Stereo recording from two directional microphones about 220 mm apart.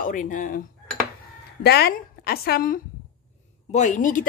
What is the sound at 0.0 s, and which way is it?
Speech, 35° left (ahead or behind).